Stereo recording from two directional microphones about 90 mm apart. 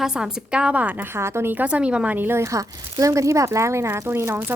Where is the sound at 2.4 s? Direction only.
35° right (ahead or behind).